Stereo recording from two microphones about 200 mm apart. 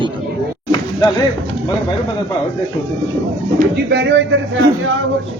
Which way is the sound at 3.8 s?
60° right (ahead or behind).